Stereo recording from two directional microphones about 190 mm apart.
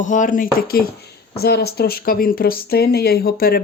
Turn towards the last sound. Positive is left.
turn(degrees=50)  # may be behind; listen again after turning